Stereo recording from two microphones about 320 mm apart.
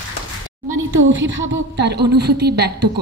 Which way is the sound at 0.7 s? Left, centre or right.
Right.